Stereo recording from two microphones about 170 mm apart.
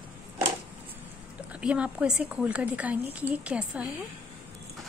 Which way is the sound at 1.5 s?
5° right (ahead or behind).